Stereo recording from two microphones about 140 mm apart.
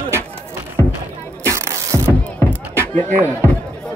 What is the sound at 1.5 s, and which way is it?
Music, 20° right (ahead or behind).